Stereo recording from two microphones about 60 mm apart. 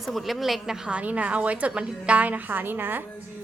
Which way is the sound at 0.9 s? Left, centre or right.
Right.